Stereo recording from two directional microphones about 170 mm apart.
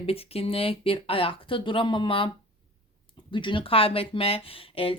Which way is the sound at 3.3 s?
30° left (ahead or behind).